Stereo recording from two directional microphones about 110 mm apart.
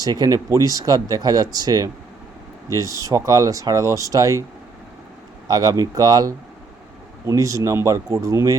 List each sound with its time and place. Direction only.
0.0 s speech: 35° right (ahead or behind)
5.5 s speech: 35° right (ahead or behind)